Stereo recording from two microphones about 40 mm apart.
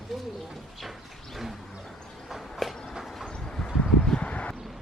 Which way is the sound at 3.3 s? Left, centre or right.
Left.